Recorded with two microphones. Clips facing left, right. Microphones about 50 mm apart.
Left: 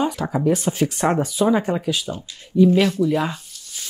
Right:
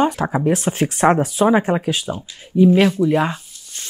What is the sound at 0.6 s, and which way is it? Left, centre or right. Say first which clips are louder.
Speech: right 4 dB; right.